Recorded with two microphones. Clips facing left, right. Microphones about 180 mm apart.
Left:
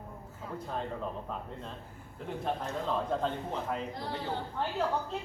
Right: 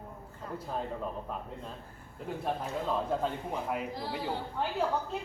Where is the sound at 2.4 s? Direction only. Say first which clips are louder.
Even; 5° right (ahead or behind).